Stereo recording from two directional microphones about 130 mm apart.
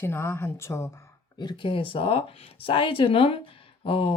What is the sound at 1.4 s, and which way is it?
Speech, 40° left (ahead or behind).